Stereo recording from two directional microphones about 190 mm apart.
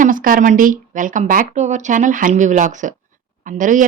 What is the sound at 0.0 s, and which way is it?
A woman's voice, 45° right (ahead or behind).